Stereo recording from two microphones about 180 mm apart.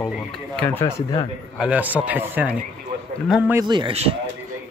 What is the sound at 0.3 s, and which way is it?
Speech, 10° left (ahead or behind).